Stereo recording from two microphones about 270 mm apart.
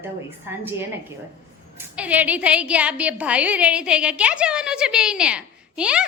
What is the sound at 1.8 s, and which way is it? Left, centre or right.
A woman's voice, centre.